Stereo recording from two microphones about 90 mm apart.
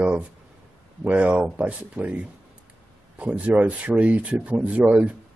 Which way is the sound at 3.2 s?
15° right (ahead or behind).